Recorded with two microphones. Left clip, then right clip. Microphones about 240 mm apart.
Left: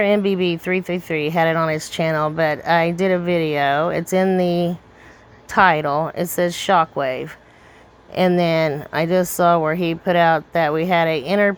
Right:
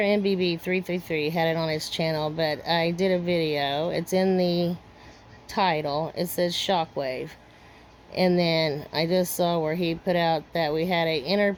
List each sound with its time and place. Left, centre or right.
0.0 s speech: centre
4.4 s speech: left
5.5 s speech: left
5.9 s speech: left
6.1 s speech: left